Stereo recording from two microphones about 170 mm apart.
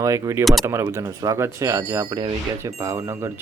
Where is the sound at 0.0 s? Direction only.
15° right (ahead or behind).